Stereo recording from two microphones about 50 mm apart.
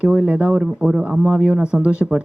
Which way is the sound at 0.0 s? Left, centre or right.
Right.